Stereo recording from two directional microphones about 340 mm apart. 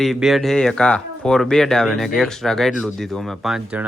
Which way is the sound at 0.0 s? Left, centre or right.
Centre.